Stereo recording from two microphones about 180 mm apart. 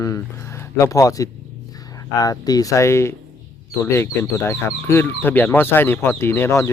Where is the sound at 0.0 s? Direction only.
15° left (ahead or behind).